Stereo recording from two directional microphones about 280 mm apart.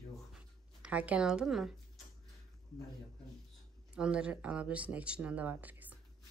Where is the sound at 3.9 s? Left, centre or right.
Centre.